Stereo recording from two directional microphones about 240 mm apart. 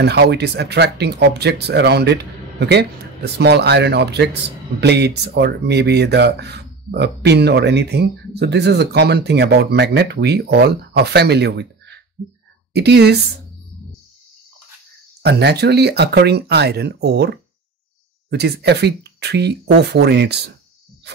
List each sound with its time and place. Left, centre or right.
0.0 s speech: right
15.2 s speech: right